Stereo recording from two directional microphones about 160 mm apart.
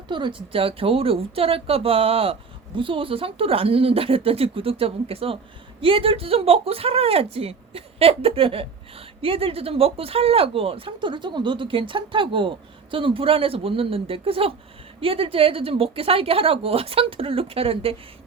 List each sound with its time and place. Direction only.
0.1 s speech: 30° right (ahead or behind)